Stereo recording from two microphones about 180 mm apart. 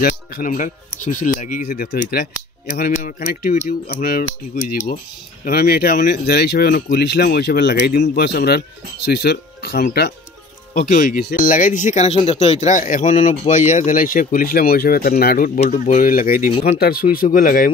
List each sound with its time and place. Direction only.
0.0 s speech: 45° left (ahead or behind)
1.9 s speech: 65° left (ahead or behind)
7.7 s speech: 50° left (ahead or behind)
10.7 s speech: 45° left (ahead or behind)